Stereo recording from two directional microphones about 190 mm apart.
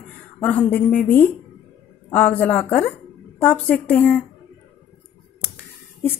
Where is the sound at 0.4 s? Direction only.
5° left (ahead or behind).